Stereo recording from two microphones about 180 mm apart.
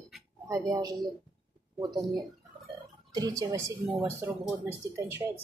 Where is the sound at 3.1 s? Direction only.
20° right (ahead or behind).